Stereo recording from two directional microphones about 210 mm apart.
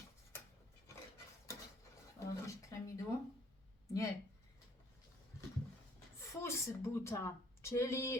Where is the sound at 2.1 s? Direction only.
15° left (ahead or behind).